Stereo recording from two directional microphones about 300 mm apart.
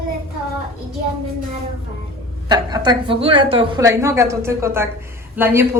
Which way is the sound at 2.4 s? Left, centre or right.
Centre.